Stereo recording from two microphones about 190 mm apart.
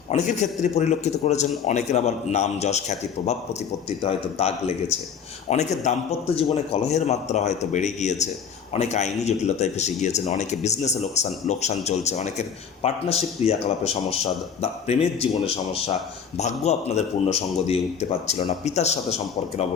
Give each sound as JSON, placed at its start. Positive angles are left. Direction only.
{"t": 0.1, "sound": "speech", "side_deg": 35}